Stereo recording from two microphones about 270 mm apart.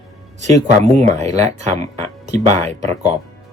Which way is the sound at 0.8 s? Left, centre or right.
Right.